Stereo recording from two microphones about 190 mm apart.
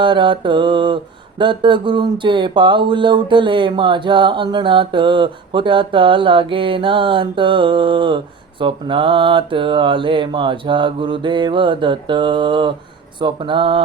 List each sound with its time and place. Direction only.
0.0 s speech: 25° right (ahead or behind)